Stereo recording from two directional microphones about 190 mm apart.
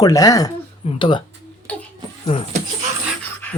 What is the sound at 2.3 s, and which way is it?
Speech, 30° left (ahead or behind).